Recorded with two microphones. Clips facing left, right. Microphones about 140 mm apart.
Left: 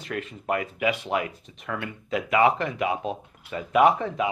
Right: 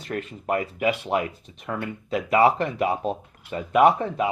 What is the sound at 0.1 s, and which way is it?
Speech, 35° right (ahead or behind).